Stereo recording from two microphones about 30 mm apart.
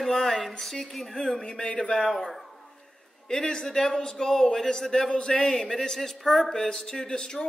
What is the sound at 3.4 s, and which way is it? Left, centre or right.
Speech, left.